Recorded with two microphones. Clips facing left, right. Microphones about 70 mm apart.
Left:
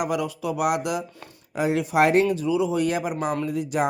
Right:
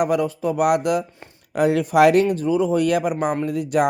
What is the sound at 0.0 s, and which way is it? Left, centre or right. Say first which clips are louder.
Speech: right 6 dB; right.